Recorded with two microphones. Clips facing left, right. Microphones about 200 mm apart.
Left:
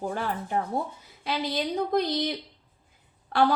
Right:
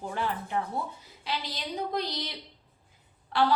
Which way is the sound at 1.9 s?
50° left (ahead or behind).